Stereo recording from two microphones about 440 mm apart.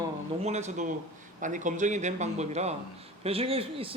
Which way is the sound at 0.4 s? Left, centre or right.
Centre.